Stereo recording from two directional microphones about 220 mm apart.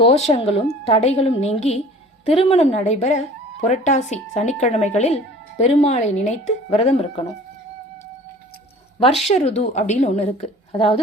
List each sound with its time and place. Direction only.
0.3 s a woman's voice: 25° left (ahead or behind)
9.2 s a woman's voice: 30° left (ahead or behind)